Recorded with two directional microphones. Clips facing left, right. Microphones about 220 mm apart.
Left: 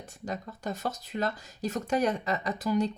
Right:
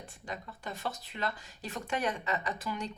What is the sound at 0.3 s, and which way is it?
Speech, 40° left (ahead or behind).